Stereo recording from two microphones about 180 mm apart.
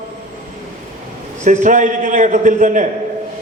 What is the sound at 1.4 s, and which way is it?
A man's voice, 45° right (ahead or behind).